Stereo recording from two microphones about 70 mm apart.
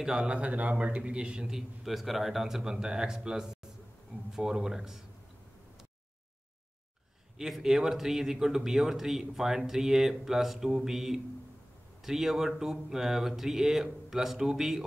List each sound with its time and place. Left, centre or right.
0.0 s a man's voice: centre
1.9 s a man's voice: centre
7.3 s speech: centre